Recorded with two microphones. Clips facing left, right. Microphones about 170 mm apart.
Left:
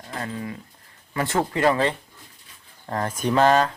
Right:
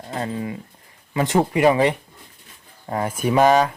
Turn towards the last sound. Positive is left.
turn(degrees=-15)  # may be behind; listen again after turning